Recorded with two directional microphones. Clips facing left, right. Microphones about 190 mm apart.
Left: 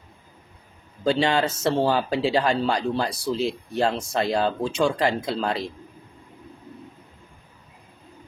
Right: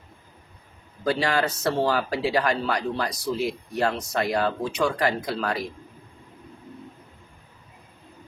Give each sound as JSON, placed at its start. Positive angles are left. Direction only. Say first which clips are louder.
{"t": 1.0, "sound": "speech", "louder": "left 2 dB", "side_deg": 25}